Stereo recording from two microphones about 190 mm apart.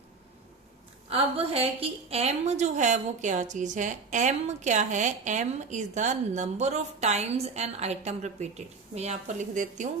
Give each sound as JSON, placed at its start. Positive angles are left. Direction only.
{"t": 1.1, "sound": "a woman's voice", "side_deg": -30}